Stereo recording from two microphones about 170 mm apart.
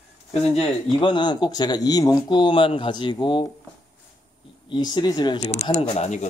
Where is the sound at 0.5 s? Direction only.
30° left (ahead or behind).